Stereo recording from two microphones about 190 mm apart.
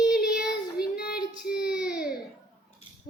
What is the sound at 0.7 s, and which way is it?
Child singing, 55° left (ahead or behind).